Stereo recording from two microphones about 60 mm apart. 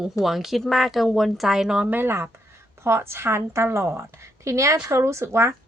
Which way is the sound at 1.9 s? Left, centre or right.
Right.